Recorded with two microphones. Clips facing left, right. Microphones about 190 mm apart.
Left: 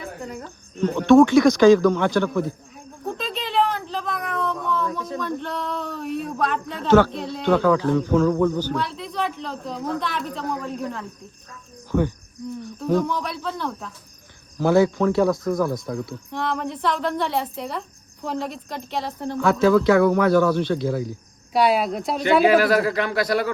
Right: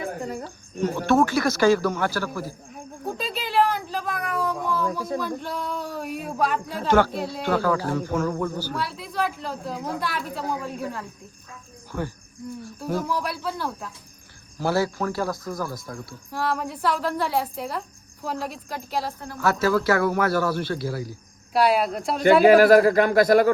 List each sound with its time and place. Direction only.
0.2 s cricket: 35° right (ahead or behind)
0.4 s speech: 10° right (ahead or behind)
3.1 s a sound: 5° right (ahead or behind)
6.8 s speech: 10° right (ahead or behind)
11.9 s cricket: 5° right (ahead or behind)
12.6 s speech: 5° right (ahead or behind)
22.4 s a man's voice: 50° right (ahead or behind)